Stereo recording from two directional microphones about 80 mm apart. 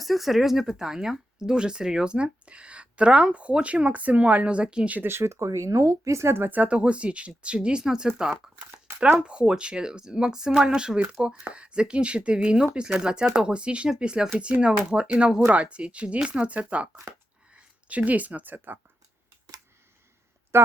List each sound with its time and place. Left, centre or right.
0.0 s speech: centre
5.0 s speech: right